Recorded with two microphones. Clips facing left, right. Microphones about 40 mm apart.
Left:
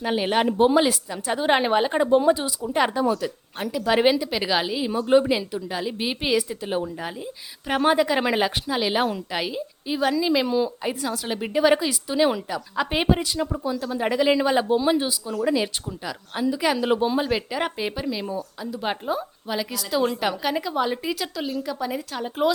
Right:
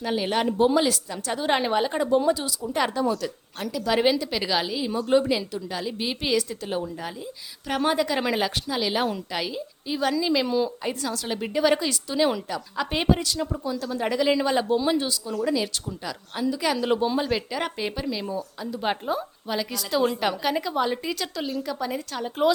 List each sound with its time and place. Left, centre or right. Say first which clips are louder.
0.0 s a woman's voice: left 3 dB; left; by 22.5 s centre